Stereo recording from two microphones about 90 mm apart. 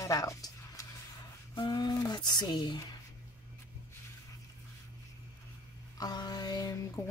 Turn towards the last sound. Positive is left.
turn(degrees=45)  # may be behind; listen again after turning